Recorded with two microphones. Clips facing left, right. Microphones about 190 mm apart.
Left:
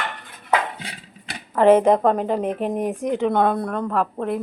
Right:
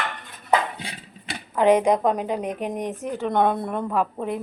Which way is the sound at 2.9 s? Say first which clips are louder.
Left 6 dB; 15° left (ahead or behind).